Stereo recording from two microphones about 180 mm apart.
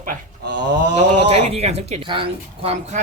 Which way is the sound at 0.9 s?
35° right (ahead or behind).